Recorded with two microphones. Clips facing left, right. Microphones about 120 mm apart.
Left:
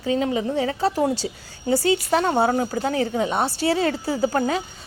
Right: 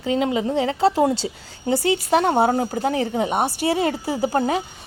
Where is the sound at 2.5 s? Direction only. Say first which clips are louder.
Right 1 dB; 35° right (ahead or behind).